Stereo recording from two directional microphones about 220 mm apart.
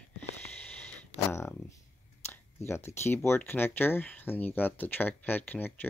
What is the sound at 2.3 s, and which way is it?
Speech, 10° left (ahead or behind).